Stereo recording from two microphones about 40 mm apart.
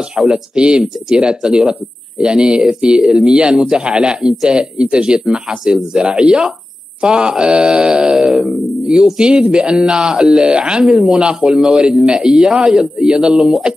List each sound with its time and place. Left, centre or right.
0.3 s speech: right